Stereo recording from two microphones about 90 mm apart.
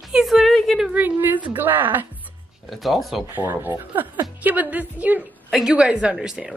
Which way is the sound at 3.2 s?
25° right (ahead or behind).